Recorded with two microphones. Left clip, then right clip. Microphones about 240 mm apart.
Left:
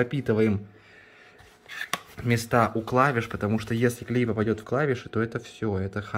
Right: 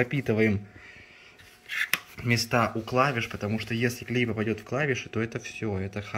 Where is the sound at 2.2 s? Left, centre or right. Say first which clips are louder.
Left 3 dB; centre.